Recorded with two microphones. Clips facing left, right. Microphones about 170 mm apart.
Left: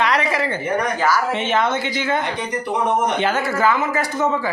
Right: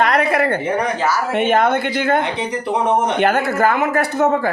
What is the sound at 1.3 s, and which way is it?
Speech, 55° right (ahead or behind).